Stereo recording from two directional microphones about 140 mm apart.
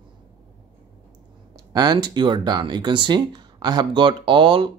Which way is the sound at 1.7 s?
30° right (ahead or behind).